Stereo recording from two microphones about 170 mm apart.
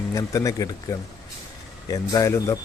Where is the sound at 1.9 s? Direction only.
20° left (ahead or behind).